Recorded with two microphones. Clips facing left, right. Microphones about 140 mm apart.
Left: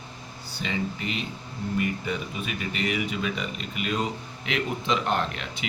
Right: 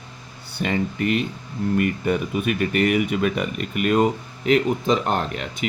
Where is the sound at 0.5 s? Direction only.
55° right (ahead or behind).